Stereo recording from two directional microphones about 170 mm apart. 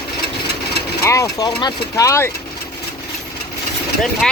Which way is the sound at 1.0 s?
20° left (ahead or behind).